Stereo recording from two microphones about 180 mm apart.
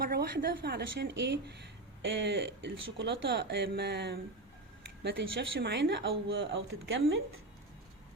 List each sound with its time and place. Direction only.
0.0 s a woman's voice: 60° right (ahead or behind)
5.2 s a woman's voice: 80° right